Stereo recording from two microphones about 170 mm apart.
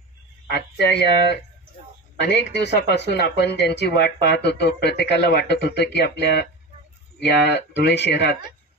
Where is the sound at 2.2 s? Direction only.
90° left.